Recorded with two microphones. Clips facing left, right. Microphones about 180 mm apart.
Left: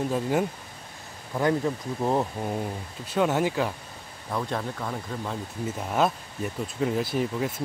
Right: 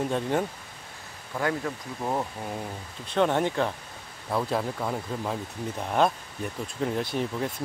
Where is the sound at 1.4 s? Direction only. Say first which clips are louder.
Left 5 dB; 20° left (ahead or behind).